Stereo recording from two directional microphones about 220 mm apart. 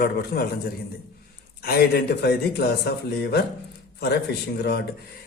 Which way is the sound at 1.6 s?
45° left (ahead or behind).